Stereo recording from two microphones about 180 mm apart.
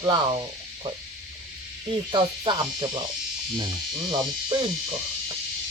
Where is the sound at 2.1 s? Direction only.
25° right (ahead or behind).